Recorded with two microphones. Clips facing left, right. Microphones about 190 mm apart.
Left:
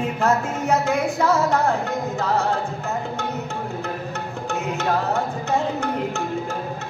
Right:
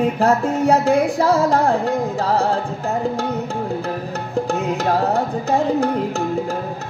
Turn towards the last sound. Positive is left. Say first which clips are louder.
# right 5 dB
turn(degrees=-35)  # may be behind; listen again after turning